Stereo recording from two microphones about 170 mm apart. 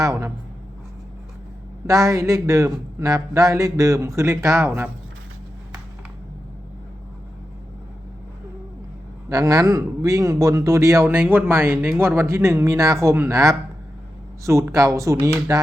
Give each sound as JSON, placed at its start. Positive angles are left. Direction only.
{"t": 0.0, "sound": "speech", "side_deg": -15}
{"t": 1.9, "sound": "a man's voice", "side_deg": -20}
{"t": 9.3, "sound": "speech", "side_deg": -20}